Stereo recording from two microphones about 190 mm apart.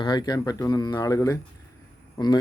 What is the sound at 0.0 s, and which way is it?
Speech, 20° left (ahead or behind).